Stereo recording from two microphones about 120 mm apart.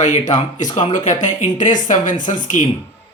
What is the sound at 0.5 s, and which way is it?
Speech, 90° left.